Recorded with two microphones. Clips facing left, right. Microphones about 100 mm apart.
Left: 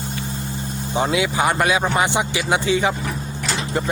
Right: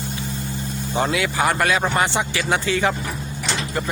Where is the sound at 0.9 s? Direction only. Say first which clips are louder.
Left 2 dB; 20° left (ahead or behind).